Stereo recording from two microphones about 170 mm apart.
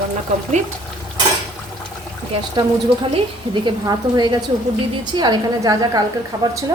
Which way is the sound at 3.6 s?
25° right (ahead or behind).